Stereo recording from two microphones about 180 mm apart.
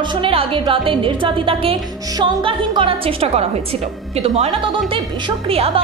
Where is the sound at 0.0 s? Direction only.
25° right (ahead or behind).